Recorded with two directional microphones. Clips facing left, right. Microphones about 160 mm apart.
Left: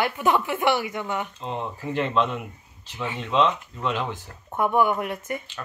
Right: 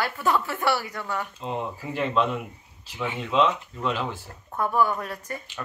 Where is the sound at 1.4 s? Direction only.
5° right (ahead or behind).